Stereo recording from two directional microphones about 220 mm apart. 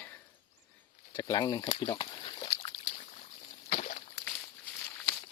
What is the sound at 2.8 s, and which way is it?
Boat, 35° left (ahead or behind).